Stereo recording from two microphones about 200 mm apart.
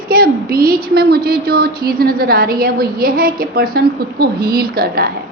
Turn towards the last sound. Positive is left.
turn(degrees=-50)  # may be behind; listen again after turning